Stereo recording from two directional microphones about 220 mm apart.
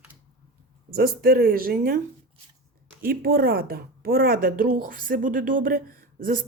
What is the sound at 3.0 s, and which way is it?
A woman's voice, 40° right (ahead or behind).